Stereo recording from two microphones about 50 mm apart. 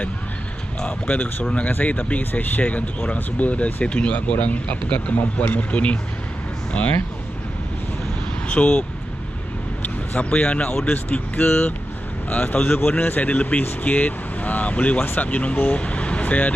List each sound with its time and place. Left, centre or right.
0.7 s speech: left
8.5 s speech: left
10.1 s speech: left
12.6 s speech: left